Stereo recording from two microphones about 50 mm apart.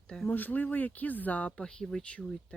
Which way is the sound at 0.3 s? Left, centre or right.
Left.